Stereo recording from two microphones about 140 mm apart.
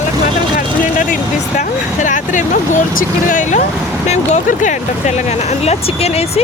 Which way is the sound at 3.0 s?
70° left (ahead or behind).